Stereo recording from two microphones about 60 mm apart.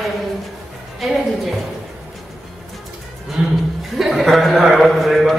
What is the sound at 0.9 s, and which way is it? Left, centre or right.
Music, centre.